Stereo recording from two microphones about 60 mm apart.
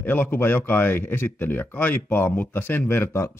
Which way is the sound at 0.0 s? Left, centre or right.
Left.